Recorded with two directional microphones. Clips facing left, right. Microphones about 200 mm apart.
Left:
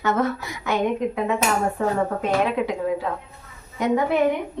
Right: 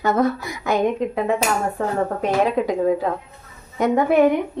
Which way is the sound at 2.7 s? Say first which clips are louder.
Right 5 dB; 40° right (ahead or behind).